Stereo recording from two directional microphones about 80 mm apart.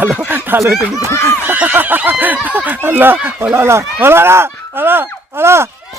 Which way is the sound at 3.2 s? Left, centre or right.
Right.